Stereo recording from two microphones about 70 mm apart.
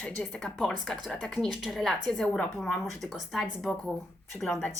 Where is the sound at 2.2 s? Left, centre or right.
Centre.